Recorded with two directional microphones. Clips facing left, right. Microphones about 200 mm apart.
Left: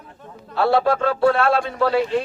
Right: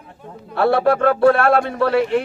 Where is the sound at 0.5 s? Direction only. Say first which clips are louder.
Right 2 dB; 55° right (ahead or behind).